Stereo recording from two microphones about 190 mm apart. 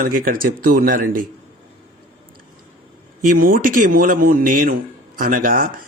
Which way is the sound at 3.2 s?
45° right (ahead or behind).